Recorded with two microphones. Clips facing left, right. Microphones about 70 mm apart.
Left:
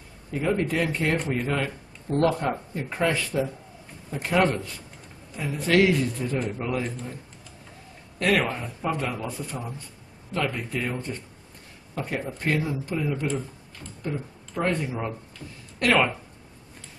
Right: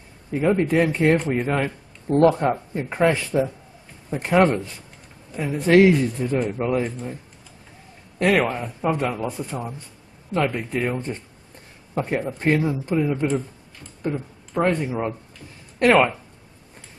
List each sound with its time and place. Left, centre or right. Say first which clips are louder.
0.3 s speech: right 5 dB; right
8.5 s speech: right 5 dB; centre